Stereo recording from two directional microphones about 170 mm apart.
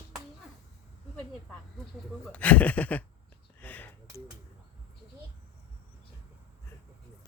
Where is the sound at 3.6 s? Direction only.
10° left (ahead or behind).